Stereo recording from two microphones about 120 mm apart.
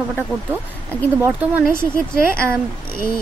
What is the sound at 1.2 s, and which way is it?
A woman's voice, 15° right (ahead or behind).